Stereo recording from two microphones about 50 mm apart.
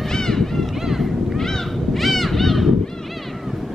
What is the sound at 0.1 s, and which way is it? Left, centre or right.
Run, centre.